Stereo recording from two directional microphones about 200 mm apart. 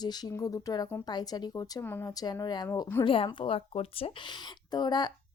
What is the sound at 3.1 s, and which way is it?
A woman's voice, 25° left (ahead or behind).